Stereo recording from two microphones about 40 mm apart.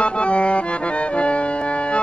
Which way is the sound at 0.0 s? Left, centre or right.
Left.